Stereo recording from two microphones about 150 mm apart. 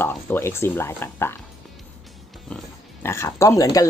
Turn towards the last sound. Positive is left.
turn(degrees=20)  # may be behind; listen again after turning